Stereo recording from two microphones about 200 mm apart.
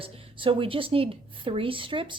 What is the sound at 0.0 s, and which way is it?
A woman's voice, 25° right (ahead or behind).